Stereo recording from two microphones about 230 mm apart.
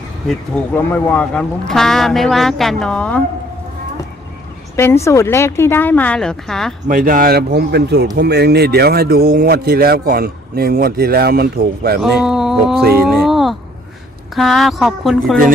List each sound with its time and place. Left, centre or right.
0.3 s speech: centre
4.8 s speech: centre
6.8 s speech: right
12.0 s speech: centre
13.1 s a sound: centre
14.3 s speech: centre